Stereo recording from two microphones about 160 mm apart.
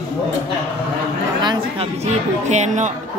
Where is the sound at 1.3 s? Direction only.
30° right (ahead or behind); by 2.9 s 50° right (ahead or behind).